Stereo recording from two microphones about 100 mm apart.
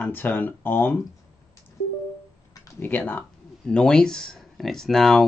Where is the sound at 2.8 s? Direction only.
20° left (ahead or behind).